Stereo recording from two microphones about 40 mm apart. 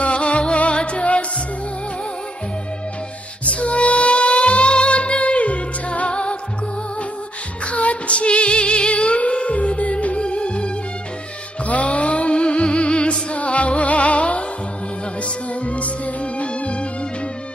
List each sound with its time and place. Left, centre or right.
0.0 s music: left
3.4 s music: left
7.6 s female singing: left
11.6 s music: left
15.6 s music: left